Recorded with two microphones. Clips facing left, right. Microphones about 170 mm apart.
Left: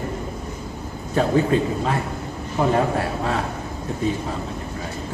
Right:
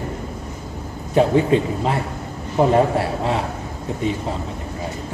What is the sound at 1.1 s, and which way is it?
A man's voice, 20° right (ahead or behind).